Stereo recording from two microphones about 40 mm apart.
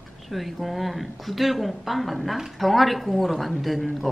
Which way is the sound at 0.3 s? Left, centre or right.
Centre.